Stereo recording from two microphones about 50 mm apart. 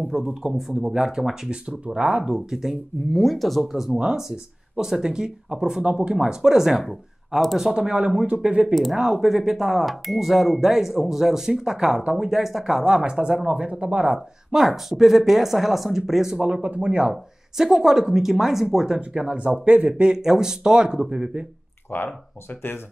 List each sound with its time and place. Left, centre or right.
0.1 s speech: centre
1.5 s speech: right
2.3 s speech: centre
12.8 s speech: centre
14.5 s speech: centre
16.3 s speech: right
17.1 s speech: centre
19.1 s speech: right
21.9 s speech: left